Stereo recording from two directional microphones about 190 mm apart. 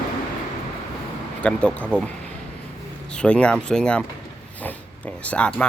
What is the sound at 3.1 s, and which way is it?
Speech, 5° left (ahead or behind).